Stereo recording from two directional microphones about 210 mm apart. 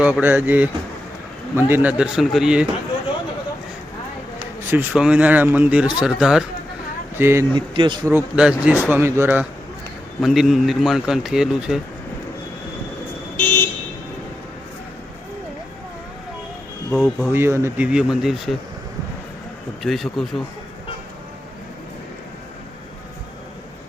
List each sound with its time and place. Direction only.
0.0 s a man's voice: 10° right (ahead or behind)
4.7 s a man's voice: 10° right (ahead or behind)
7.7 s speech: 20° right (ahead or behind)
8.1 s a man's voice: 5° right (ahead or behind)
13.3 s vehicle: 10° left (ahead or behind)
16.9 s a man's voice: 5° left (ahead or behind)
17.3 s a man's voice: 10° right (ahead or behind)
19.8 s a man's voice: centre (ahead or behind)